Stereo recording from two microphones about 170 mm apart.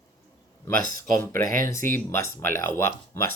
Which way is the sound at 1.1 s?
15° left (ahead or behind).